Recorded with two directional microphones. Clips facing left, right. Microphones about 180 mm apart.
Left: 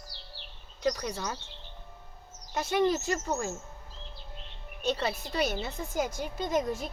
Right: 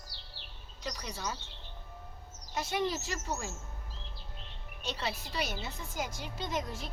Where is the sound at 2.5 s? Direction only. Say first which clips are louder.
Left 6 dB; 50° left (ahead or behind).